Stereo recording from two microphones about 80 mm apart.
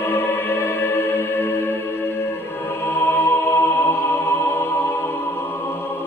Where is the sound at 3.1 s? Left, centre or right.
Left.